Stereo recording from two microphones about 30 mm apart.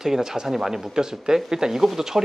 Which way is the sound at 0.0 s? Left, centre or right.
Centre.